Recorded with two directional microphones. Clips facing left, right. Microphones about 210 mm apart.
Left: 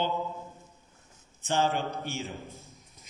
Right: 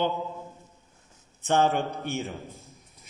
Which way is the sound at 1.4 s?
55° right (ahead or behind).